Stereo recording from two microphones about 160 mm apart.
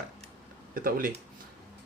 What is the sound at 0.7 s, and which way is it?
Speech, 60° right (ahead or behind).